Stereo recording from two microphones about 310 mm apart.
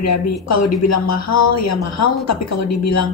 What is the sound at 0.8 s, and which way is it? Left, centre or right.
A man's voice, left.